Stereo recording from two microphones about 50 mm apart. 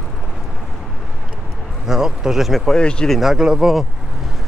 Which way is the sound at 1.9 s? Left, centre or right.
Centre.